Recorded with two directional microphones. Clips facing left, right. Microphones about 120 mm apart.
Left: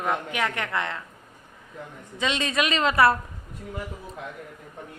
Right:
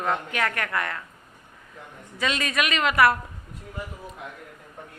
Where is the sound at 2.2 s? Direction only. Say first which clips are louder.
Left 1 dB; 25° left (ahead or behind).